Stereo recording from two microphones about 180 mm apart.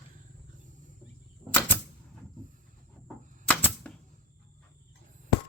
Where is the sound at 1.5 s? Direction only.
10° left (ahead or behind).